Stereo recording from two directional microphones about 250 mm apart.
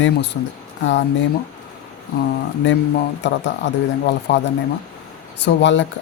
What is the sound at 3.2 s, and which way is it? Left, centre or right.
Speech, left.